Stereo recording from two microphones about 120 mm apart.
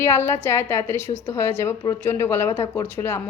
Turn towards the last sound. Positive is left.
turn(degrees=20)  # may be behind; listen again after turning